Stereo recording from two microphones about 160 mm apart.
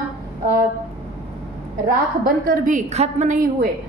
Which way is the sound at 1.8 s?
65° right (ahead or behind).